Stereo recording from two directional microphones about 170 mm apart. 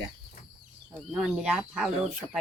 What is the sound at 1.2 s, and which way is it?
Speech, centre (ahead or behind).